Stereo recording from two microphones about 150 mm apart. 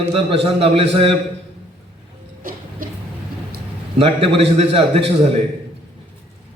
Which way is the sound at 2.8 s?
70° right (ahead or behind).